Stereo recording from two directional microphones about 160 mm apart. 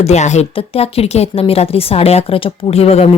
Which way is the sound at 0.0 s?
45° left (ahead or behind).